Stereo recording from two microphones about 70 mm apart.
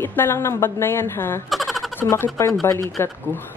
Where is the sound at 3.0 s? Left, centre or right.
Left.